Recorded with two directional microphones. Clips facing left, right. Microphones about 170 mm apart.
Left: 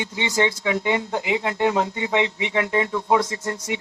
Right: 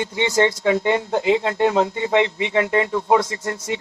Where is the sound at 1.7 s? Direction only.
20° right (ahead or behind).